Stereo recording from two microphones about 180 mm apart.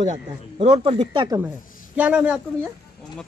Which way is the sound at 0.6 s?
30° right (ahead or behind).